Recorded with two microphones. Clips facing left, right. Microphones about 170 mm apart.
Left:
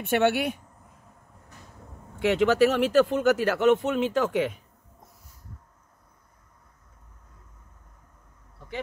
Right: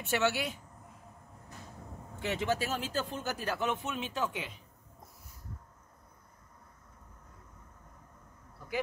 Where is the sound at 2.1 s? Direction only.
75° left (ahead or behind).